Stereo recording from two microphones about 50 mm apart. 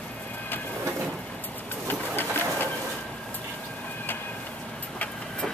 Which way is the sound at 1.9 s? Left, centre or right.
Left.